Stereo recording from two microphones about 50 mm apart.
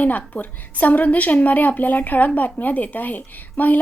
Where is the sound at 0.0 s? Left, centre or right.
Left.